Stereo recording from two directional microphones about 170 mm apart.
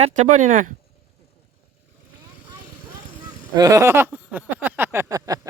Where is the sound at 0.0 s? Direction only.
45° right (ahead or behind).